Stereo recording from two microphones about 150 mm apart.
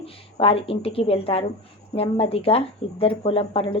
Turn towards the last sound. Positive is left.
turn(degrees=40)  # may be behind; listen again after turning